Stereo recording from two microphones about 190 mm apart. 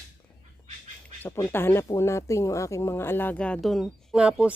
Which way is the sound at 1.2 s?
10° left (ahead or behind).